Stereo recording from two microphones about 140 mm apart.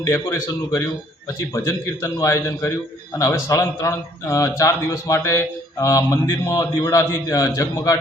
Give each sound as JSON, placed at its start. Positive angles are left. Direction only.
{"t": 0.1, "sound": "a man's voice", "side_deg": 20}